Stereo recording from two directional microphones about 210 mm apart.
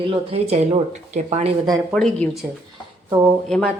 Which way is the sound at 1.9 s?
5° left (ahead or behind).